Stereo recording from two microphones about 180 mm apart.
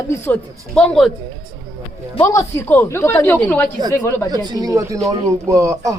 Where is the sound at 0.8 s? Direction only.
5° left (ahead or behind).